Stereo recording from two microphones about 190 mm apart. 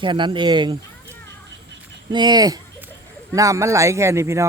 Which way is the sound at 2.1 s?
25° right (ahead or behind).